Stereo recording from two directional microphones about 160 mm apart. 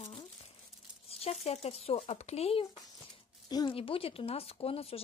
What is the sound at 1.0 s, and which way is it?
Speech, 40° left (ahead or behind).